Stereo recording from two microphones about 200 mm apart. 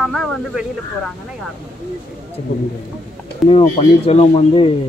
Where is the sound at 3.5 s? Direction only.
30° left (ahead or behind).